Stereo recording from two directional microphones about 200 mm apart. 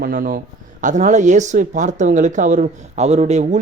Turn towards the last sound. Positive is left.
turn(degrees=-35)  # may be behind; listen again after turning